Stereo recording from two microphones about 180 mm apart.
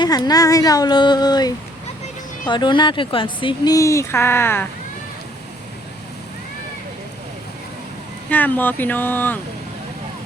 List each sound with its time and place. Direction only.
0.0 s speech: 25° left (ahead or behind)
8.3 s speech: 10° left (ahead or behind)